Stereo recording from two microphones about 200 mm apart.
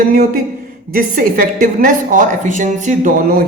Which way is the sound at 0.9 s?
45° right (ahead or behind).